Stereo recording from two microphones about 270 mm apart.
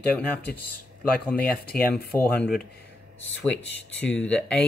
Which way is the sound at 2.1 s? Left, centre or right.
Centre.